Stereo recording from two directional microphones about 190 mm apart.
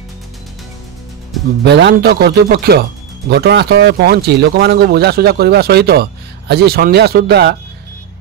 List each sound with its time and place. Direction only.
1.6 s speech: 65° right (ahead or behind)